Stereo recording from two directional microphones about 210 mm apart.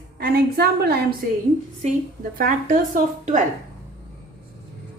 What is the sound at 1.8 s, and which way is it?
A woman's voice, 35° right (ahead or behind).